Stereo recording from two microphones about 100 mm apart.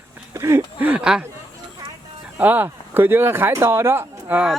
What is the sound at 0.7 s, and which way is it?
Speech, 15° right (ahead or behind).